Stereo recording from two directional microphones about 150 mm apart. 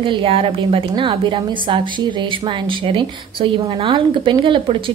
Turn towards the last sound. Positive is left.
turn(degrees=-35)  # may be behind; listen again after turning